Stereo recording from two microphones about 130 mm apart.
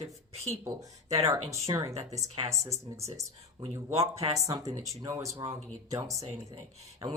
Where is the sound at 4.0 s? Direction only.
50° right (ahead or behind).